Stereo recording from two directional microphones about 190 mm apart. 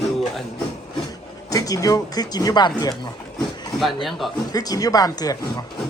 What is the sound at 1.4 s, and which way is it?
Speech, 20° left (ahead or behind).